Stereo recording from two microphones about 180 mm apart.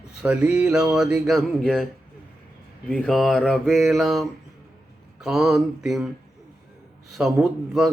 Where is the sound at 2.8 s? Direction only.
5° left (ahead or behind).